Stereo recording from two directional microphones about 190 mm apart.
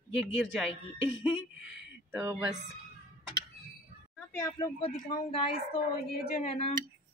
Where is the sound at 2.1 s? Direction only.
15° right (ahead or behind).